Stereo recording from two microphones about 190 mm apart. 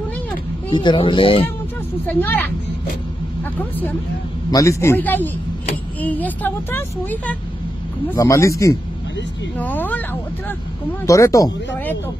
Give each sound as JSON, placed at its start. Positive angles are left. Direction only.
{"t": 0.7, "sound": "speech", "side_deg": 25}
{"t": 2.0, "sound": "speech", "side_deg": 10}
{"t": 4.5, "sound": "speech", "side_deg": 15}
{"t": 11.1, "sound": "speech", "side_deg": 15}